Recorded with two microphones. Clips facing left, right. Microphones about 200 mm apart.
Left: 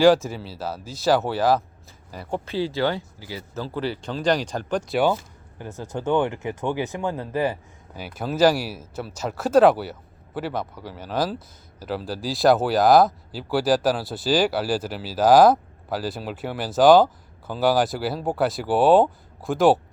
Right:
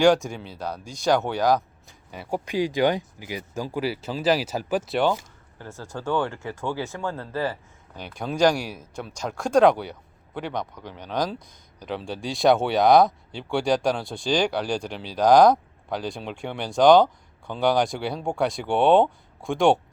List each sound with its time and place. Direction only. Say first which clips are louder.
0.0 s speech: left 2 dB; centre (ahead or behind)
2.4 s speech: right 2 dB; 15° right (ahead or behind)
5.5 s speech: left 4 dB; 20° left (ahead or behind)
8.0 s speech: left 2 dB; 5° left (ahead or behind)